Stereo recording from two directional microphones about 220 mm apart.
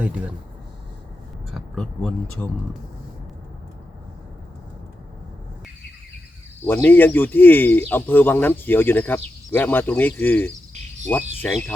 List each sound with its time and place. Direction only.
1.5 s speech: centre (ahead or behind)
6.7 s speech: 10° left (ahead or behind)